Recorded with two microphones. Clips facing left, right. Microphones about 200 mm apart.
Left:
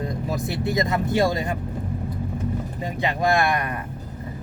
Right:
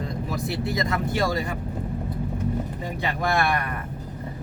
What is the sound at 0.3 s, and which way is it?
Speech, 20° left (ahead or behind).